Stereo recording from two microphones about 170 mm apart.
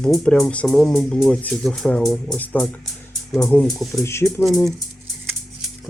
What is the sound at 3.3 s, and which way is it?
Speech, 15° left (ahead or behind).